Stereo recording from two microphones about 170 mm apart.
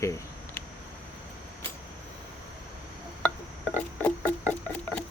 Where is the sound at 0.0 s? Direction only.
15° left (ahead or behind).